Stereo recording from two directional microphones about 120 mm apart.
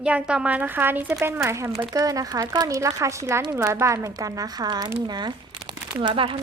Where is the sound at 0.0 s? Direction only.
10° right (ahead or behind).